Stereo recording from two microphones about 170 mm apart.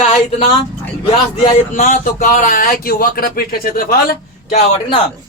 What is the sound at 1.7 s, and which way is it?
Speech, 50° left (ahead or behind).